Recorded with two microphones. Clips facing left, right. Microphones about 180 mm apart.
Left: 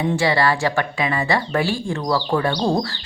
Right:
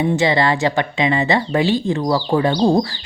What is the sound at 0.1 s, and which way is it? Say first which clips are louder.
A woman's voice: right 2 dB; 20° right (ahead or behind).